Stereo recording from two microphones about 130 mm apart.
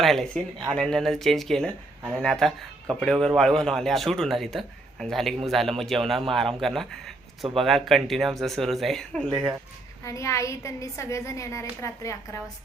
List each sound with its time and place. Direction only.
0.0 s a man's voice: centre (ahead or behind)
10.0 s a woman's voice: 25° left (ahead or behind)